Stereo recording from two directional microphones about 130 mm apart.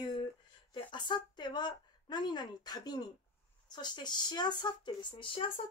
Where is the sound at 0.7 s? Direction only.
35° left (ahead or behind).